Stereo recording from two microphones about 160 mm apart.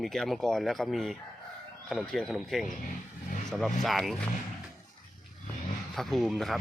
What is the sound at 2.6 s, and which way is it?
Speech, 55° left (ahead or behind).